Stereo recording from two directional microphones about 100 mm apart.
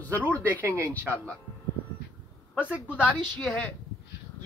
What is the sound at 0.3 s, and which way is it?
Speech, 20° left (ahead or behind).